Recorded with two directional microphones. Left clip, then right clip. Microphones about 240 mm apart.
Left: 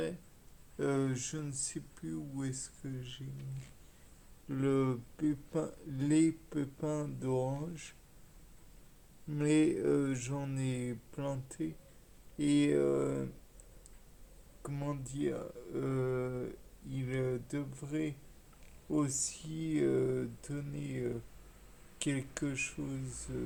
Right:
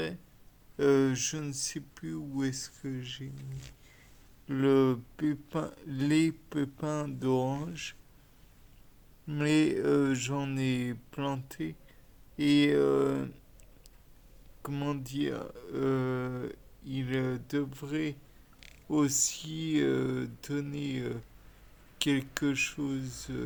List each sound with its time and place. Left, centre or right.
0.8 s speech: right
4.4 s speech: right
9.3 s speech: right
14.6 s speech: right